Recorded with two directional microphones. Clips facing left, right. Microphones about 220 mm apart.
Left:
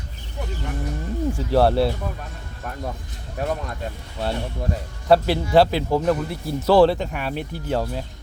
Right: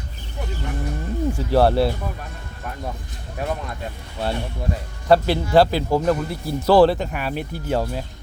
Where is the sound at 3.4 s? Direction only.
40° left (ahead or behind).